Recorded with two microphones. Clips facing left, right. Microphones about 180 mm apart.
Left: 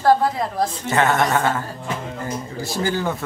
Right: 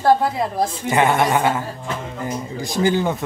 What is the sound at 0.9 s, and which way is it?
Speech, 15° right (ahead or behind).